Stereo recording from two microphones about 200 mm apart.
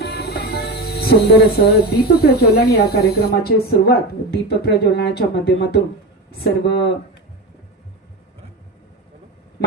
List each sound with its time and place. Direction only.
0.0 s speech: 55° left (ahead or behind)